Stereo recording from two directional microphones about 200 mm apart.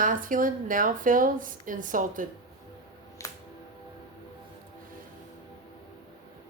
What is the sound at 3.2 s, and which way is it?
Music, 15° left (ahead or behind).